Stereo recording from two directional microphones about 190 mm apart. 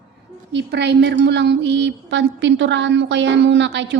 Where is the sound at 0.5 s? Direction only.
65° right (ahead or behind).